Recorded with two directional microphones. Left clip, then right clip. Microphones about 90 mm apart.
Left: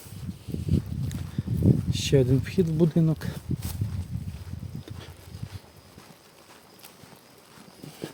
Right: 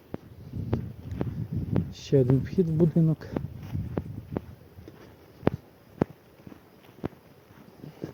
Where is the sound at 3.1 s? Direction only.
20° left (ahead or behind).